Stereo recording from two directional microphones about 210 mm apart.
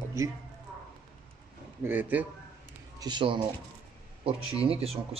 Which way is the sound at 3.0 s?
20° right (ahead or behind).